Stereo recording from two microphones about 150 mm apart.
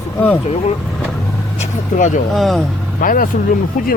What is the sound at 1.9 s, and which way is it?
Speech, 55° left (ahead or behind).